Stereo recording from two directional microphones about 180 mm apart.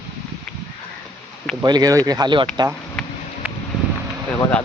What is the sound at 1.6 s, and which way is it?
Speech, 20° right (ahead or behind).